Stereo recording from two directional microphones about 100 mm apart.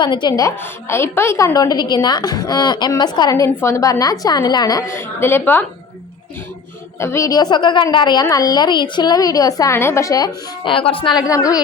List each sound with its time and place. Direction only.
0.0 s a woman's voice: 50° left (ahead or behind)
0.6 s a woman's voice: 25° left (ahead or behind)
4.9 s a woman's voice: 25° left (ahead or behind)
7.0 s a woman's voice: 30° left (ahead or behind)
9.7 s a woman's voice: 25° left (ahead or behind)
10.6 s a woman's voice: 60° left (ahead or behind)
11.1 s a woman's voice: 35° left (ahead or behind)